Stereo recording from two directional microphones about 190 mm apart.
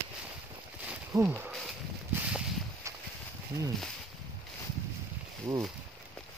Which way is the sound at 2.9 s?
15° right (ahead or behind).